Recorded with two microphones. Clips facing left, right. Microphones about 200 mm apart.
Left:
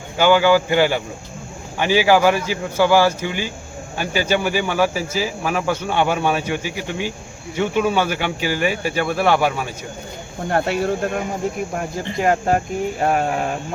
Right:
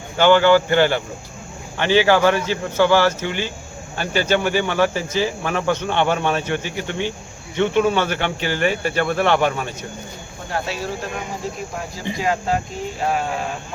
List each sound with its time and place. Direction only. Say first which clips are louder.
0.2 s speech: right 1 dB; 10° left (ahead or behind)
10.5 s speech: left 6 dB; 55° left (ahead or behind)
12.1 s speech: left 4 dB; 50° left (ahead or behind)